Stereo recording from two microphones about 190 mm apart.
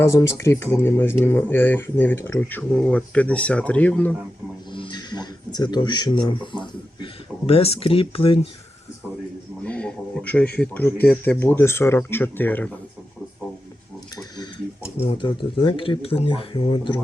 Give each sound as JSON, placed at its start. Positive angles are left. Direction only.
{"t": 0.1, "sound": "speech", "side_deg": 15}
{"t": 4.7, "sound": "speech", "side_deg": 25}
{"t": 9.6, "sound": "a sound", "side_deg": 5}
{"t": 10.6, "sound": "speech", "side_deg": 10}
{"t": 14.9, "sound": "speech", "side_deg": 30}